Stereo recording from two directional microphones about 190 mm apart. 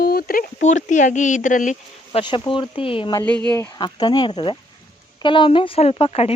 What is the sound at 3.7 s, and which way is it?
Speech, 25° left (ahead or behind).